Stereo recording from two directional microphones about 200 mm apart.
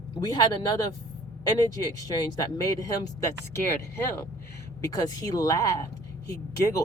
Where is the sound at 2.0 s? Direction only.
20° left (ahead or behind).